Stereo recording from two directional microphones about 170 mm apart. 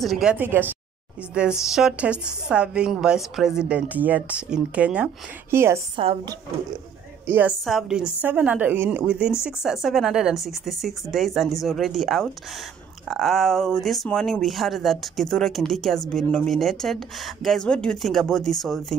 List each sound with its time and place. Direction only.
0.0 s a woman's voice: centre (ahead or behind)
5.9 s speech: 30° right (ahead or behind)
7.2 s a woman's voice: 10° right (ahead or behind)